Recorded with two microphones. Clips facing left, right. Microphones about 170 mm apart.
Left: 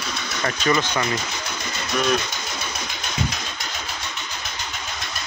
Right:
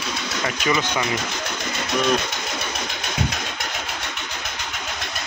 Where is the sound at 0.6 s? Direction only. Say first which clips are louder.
Left 1 dB; 10° right (ahead or behind).